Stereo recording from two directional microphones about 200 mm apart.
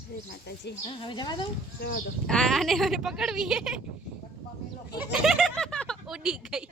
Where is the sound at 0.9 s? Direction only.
25° left (ahead or behind).